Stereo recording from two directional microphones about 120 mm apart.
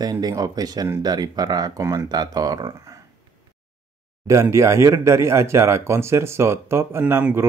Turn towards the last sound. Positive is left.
turn(degrees=-15)  # may be behind; listen again after turning